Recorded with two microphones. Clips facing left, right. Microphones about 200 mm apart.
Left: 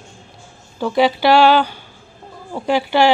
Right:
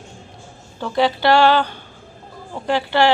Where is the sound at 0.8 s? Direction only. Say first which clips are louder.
Left 3 dB; 10° left (ahead or behind).